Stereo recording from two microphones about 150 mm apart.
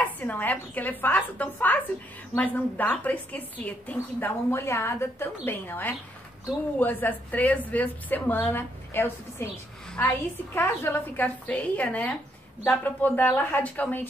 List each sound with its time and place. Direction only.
0.0 s a woman's voice: 10° left (ahead or behind)
10.5 s a woman's voice: 15° left (ahead or behind)